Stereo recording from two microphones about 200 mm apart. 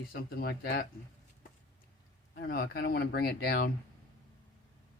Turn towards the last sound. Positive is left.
turn(degrees=50)  # may be behind; listen again after turning